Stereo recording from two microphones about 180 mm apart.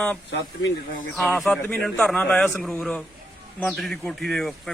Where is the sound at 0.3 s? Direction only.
75° left (ahead or behind).